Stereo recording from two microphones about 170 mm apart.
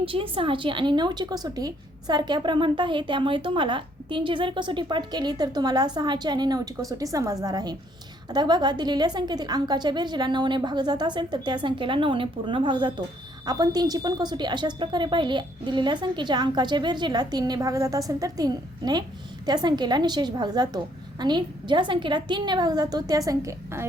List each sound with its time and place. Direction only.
0.0 s a woman's voice: 30° right (ahead or behind)